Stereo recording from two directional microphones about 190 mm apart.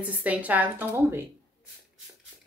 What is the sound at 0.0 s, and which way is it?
Speech, 5° right (ahead or behind).